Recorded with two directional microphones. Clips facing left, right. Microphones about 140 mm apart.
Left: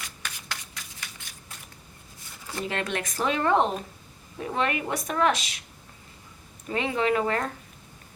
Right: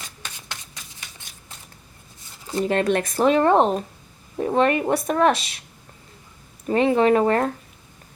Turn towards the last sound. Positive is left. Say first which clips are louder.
# right 7 dB
turn(degrees=-40)  # may be behind; listen again after turning